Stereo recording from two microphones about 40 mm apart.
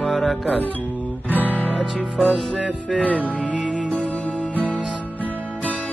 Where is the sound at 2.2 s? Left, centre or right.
Centre.